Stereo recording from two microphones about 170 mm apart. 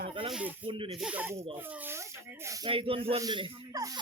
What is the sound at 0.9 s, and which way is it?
Speech, 5° right (ahead or behind).